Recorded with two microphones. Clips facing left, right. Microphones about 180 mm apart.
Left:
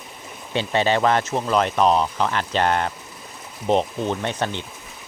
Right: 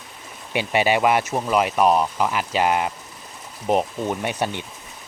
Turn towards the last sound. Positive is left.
turn(degrees=-15)  # may be behind; listen again after turning